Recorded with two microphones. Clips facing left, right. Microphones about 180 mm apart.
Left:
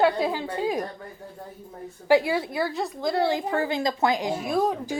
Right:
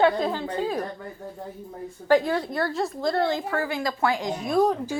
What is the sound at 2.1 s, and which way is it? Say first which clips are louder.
A woman's voice: even; 10° left (ahead or behind).